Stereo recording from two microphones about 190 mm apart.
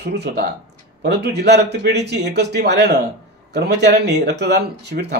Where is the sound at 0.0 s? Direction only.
60° right (ahead or behind).